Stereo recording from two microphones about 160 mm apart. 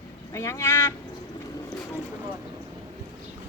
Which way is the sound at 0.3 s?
20° left (ahead or behind).